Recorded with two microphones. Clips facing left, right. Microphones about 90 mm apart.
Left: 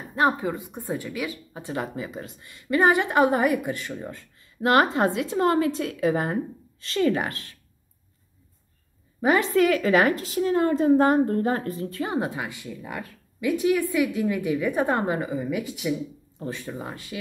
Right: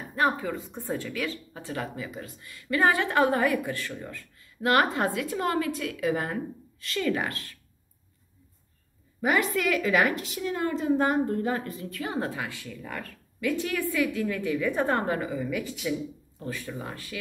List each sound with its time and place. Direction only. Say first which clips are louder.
0.1 s speech: left 3 dB; 20° left (ahead or behind)
9.2 s a woman's voice: left 5 dB; 30° left (ahead or behind)
12.0 s a woman's voice: left 3 dB; 20° left (ahead or behind)
16.3 s speech: left 3 dB; 25° left (ahead or behind)